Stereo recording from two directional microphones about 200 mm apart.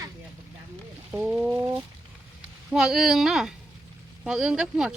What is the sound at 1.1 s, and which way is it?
Speech, 5° right (ahead or behind).